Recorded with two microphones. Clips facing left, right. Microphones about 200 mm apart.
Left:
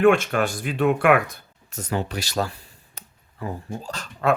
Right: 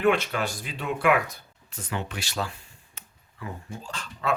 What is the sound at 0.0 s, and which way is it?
Speech, 50° left (ahead or behind).